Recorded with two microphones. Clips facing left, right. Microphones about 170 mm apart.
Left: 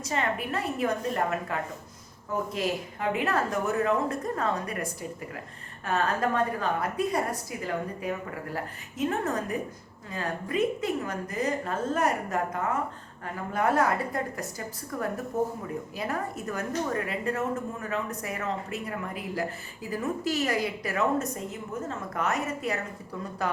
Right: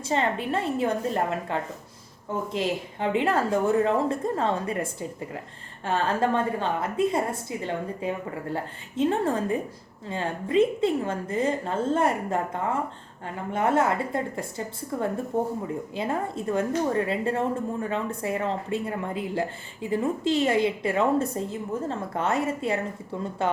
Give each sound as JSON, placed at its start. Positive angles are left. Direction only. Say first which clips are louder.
{"t": 0.0, "sound": "a woman's voice", "louder": "right 4 dB", "side_deg": -30}